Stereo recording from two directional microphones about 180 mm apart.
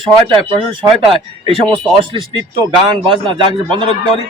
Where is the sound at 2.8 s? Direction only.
30° right (ahead or behind).